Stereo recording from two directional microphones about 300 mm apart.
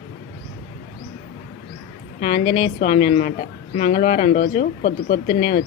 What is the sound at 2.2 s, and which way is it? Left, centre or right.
Speech, left.